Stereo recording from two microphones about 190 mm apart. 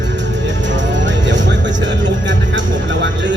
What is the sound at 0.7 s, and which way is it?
Music, 70° right (ahead or behind).